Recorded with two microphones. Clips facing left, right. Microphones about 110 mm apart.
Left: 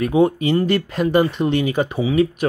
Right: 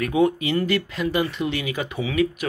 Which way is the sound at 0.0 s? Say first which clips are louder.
Left 4 dB; 35° left (ahead or behind).